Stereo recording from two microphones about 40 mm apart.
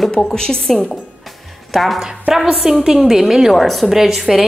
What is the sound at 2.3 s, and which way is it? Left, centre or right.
A woman's voice, centre.